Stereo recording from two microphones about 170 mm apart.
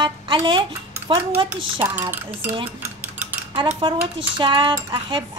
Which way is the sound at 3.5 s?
35° right (ahead or behind).